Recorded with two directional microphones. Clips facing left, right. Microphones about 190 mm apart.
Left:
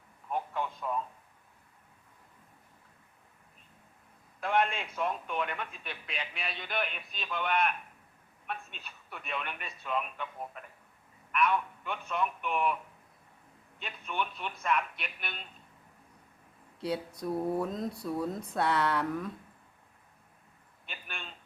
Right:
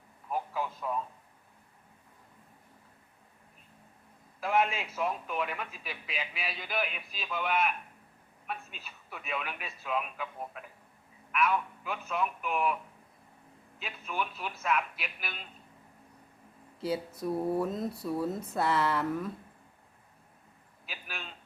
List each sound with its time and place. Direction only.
0.3 s radio: 5° right (ahead or behind)
4.4 s a man's voice: 5° right (ahead or behind)
13.7 s a man's voice: 5° right (ahead or behind)
16.8 s a man's voice: centre (ahead or behind)
20.8 s a man's voice: 5° right (ahead or behind)